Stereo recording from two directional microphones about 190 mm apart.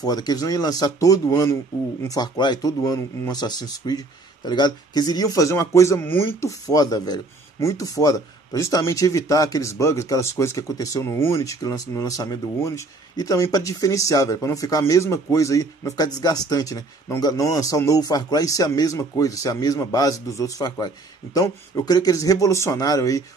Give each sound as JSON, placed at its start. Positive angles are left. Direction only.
{"t": 0.0, "sound": "speech", "side_deg": 20}